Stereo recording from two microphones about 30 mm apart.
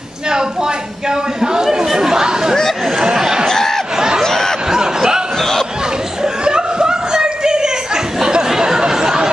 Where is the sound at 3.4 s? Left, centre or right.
Centre.